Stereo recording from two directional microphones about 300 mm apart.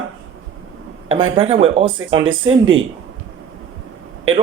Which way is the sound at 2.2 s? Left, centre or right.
Right.